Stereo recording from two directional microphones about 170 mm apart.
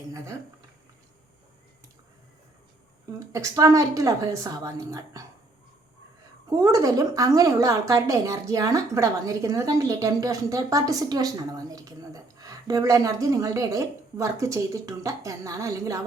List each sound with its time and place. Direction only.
3.2 s a woman's voice: 20° right (ahead or behind)
6.5 s a woman's voice: 20° right (ahead or behind)